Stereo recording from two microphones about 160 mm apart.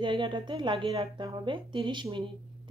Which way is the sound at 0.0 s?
30° right (ahead or behind).